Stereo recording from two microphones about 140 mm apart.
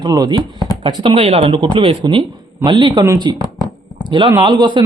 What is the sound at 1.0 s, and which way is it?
Speech, 40° right (ahead or behind).